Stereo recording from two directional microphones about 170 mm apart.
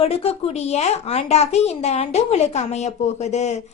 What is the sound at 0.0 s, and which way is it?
A woman's voice, 35° left (ahead or behind).